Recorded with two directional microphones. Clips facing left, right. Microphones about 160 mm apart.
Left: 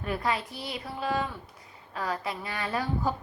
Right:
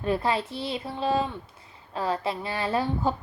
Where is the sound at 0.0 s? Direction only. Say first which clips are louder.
Right 4 dB; 30° right (ahead or behind).